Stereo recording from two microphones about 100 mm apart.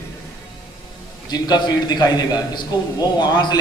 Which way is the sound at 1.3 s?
45° left (ahead or behind).